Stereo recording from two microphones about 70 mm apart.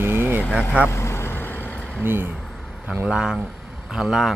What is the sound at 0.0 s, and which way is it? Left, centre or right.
Vehicle, right.